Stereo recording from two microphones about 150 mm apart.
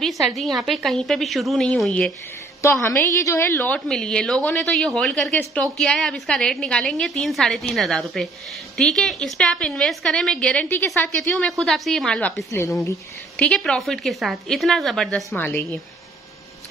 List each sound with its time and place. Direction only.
0.0 s a woman's voice: centre (ahead or behind)
2.6 s a woman's voice: 15° left (ahead or behind)
12.4 s speech: 20° left (ahead or behind)
13.4 s a woman's voice: 5° left (ahead or behind)
15.3 s a woman's voice: 15° left (ahead or behind)